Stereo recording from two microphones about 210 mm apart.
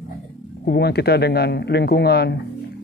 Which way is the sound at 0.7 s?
50° left (ahead or behind).